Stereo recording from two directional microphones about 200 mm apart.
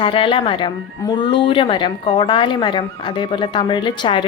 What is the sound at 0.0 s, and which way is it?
A woman's voice, 25° left (ahead or behind).